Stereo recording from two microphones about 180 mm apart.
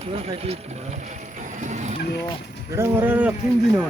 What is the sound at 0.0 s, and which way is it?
Speech, 35° right (ahead or behind).